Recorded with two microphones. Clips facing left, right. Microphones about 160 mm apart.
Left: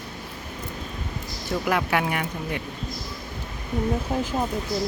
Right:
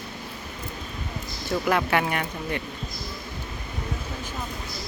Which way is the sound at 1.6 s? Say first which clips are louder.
Right 1 dB; 5° left (ahead or behind).